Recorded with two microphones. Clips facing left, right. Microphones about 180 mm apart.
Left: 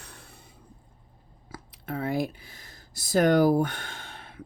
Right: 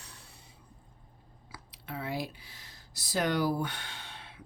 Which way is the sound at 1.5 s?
50° left (ahead or behind).